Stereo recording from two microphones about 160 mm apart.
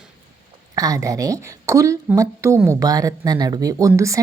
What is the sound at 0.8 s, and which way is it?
A woman's voice, 20° right (ahead or behind).